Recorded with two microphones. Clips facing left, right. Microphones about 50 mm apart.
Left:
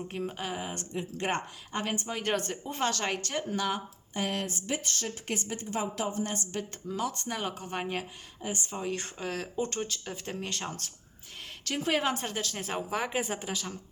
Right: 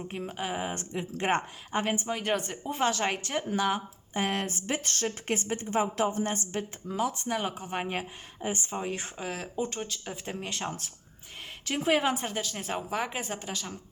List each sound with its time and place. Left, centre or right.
0.3 s speech: centre
0.6 s speech: right
2.1 s speech: centre
4.1 s a woman's voice: right
6.9 s speech: centre
8.4 s speech: right
8.7 s speech: centre